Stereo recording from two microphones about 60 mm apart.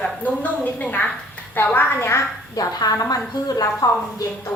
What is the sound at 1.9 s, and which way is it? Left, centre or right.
Speech, left.